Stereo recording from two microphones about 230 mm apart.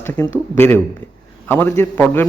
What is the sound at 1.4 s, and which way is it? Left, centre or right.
Speech, centre.